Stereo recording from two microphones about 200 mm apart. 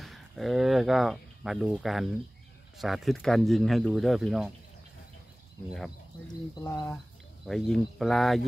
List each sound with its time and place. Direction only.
0.0 s speech: centre (ahead or behind)
6.5 s speech: 20° left (ahead or behind)
7.4 s speech: centre (ahead or behind)